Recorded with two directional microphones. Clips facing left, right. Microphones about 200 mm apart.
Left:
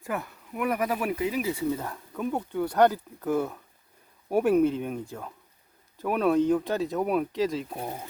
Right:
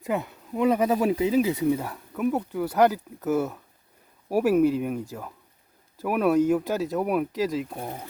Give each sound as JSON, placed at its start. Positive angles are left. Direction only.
{"t": 0.0, "sound": "speech", "side_deg": -20}